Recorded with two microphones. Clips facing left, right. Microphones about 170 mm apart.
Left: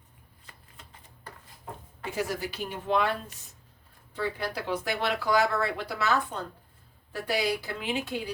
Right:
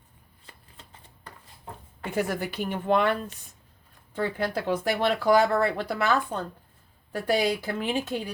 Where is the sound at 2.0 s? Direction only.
55° right (ahead or behind).